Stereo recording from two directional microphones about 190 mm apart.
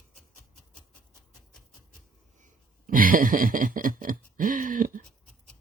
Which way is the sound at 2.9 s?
45° right (ahead or behind).